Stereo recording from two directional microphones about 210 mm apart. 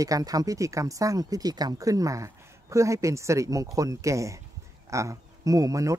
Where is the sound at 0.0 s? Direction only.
15° right (ahead or behind).